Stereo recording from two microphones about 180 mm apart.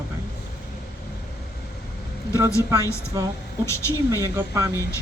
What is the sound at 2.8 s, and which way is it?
A man's voice, 15° left (ahead or behind).